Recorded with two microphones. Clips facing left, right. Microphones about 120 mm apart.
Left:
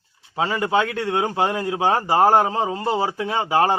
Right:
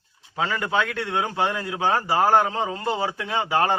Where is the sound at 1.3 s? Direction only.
35° left (ahead or behind).